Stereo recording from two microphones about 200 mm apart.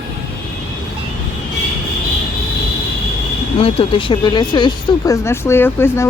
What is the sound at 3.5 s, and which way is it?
Speech, 30° left (ahead or behind).